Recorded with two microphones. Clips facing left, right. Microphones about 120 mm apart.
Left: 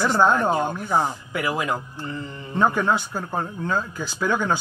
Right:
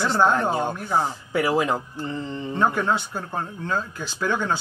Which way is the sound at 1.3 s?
30° right (ahead or behind).